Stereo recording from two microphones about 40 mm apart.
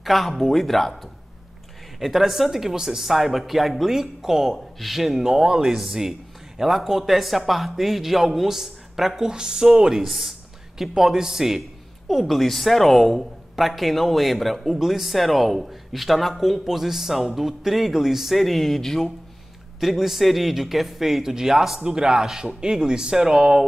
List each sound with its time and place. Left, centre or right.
0.0 s speech: centre
2.0 s speech: centre
10.0 s speech: centre
19.8 s speech: centre